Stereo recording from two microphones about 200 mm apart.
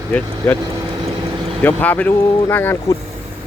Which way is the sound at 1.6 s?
10° left (ahead or behind).